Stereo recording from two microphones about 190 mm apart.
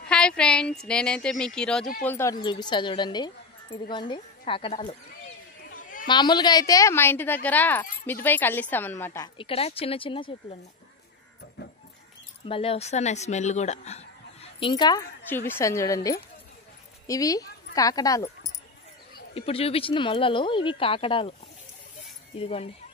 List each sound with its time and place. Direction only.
0.0 s a woman's voice: 5° left (ahead or behind)
2.4 s speech: 25° left (ahead or behind)
5.8 s a sound: 45° left (ahead or behind)
6.0 s a woman's voice: 25° left (ahead or behind)
9.5 s speech: 30° left (ahead or behind)
12.4 s speech: 30° left (ahead or behind)
15.2 s a woman's voice: 10° left (ahead or behind)
19.3 s speech: 30° left (ahead or behind)
22.4 s speech: 30° left (ahead or behind)